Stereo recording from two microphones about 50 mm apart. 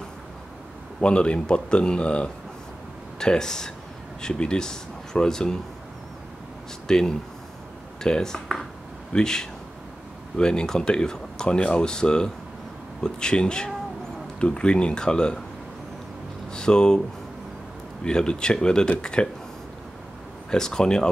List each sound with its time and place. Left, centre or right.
1.0 s speech: left
6.9 s speech: centre
16.5 s speech: centre
18.0 s speech: centre
20.5 s speech: centre